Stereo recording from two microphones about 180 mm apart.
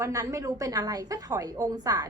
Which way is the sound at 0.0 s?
20° right (ahead or behind).